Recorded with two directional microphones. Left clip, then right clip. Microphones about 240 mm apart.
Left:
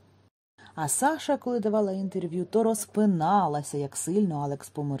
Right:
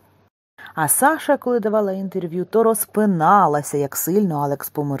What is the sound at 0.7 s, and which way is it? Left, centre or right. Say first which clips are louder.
A woman's voice: right 9 dB; right.